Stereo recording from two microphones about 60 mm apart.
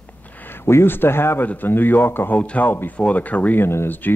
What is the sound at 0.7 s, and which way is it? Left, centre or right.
Speech, left.